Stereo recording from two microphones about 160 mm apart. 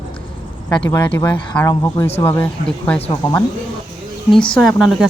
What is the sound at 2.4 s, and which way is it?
Speech, 10° left (ahead or behind).